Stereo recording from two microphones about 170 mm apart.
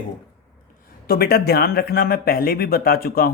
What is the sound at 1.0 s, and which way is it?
A man's voice, 65° left (ahead or behind).